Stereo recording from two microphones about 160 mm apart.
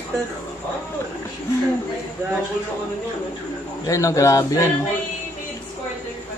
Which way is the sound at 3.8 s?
20° left (ahead or behind).